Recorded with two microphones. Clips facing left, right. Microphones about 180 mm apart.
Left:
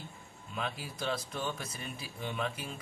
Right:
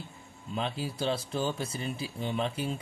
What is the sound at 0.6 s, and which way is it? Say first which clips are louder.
Speech: right 5 dB; 30° right (ahead or behind).